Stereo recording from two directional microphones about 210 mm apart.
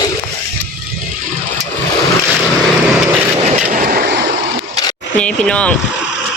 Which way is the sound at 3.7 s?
40° right (ahead or behind).